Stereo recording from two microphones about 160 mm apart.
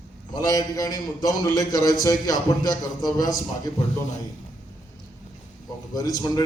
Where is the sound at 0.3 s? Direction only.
25° left (ahead or behind).